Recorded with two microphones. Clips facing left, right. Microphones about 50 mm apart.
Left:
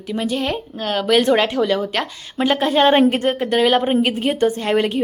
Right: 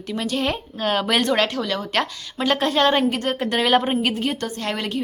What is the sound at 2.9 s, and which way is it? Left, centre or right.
Speech, left.